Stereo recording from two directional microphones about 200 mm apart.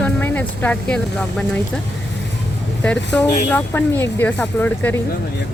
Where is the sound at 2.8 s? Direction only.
5° left (ahead or behind).